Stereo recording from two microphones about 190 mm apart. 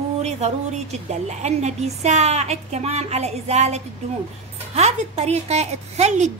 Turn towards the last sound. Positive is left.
turn(degrees=-35)  # may be behind; listen again after turning